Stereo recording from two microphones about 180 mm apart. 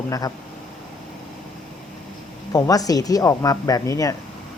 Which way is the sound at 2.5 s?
20° left (ahead or behind).